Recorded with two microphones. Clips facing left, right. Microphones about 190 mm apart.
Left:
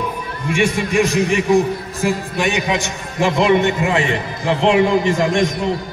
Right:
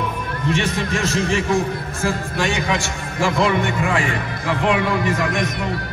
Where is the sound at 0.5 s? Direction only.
15° left (ahead or behind).